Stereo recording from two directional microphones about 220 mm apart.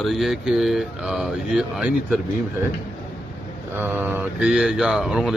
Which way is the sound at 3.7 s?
10° right (ahead or behind).